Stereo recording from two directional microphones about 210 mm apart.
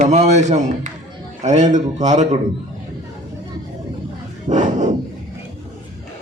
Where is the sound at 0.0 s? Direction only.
35° right (ahead or behind).